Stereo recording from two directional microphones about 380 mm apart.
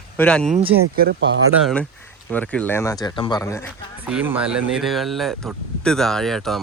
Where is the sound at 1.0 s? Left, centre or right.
Right.